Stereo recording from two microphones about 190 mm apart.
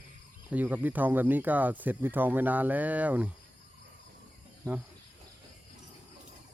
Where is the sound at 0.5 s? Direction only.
10° right (ahead or behind).